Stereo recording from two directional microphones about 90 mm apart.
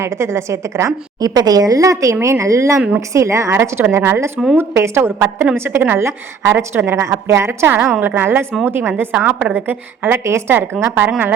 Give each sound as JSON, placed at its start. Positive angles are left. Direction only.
{"t": 0.0, "sound": "a woman's voice", "side_deg": -30}